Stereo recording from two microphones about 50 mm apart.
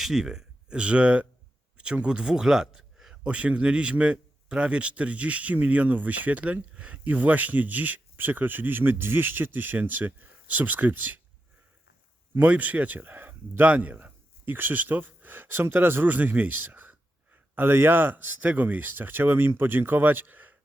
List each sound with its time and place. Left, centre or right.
0.0 s speech: centre
0.7 s a man's voice: right
3.2 s a man's voice: right
7.0 s speech: right
12.4 s speech: right
16.0 s speech: right
17.5 s speech: right